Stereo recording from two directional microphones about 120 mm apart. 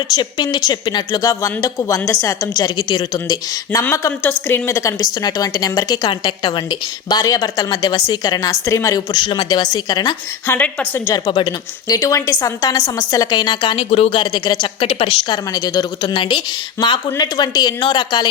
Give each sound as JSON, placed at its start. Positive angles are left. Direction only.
{"t": 0.1, "sound": "a woman's voice", "side_deg": 35}
{"t": 9.2, "sound": "a woman's voice", "side_deg": 40}
{"t": 10.4, "sound": "a woman's voice", "side_deg": 15}
{"t": 11.1, "sound": "a woman's voice", "side_deg": 40}
{"t": 14.9, "sound": "speech", "side_deg": 55}
{"t": 15.3, "sound": "a woman's voice", "side_deg": 30}
{"t": 16.8, "sound": "a woman's voice", "side_deg": 25}